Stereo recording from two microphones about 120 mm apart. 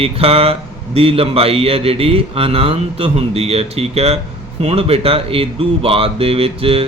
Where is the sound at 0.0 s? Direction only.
55° right (ahead or behind).